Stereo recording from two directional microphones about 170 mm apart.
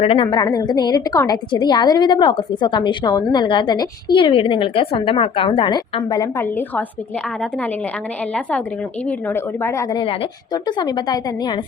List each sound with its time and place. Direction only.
0.0 s a woman's voice: 35° left (ahead or behind)
0.3 s a woman's voice: 25° left (ahead or behind)
8.3 s a woman's voice: 5° left (ahead or behind)
9.9 s a woman's voice: 25° left (ahead or behind)